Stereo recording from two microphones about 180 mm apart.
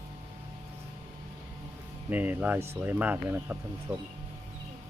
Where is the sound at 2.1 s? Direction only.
10° right (ahead or behind).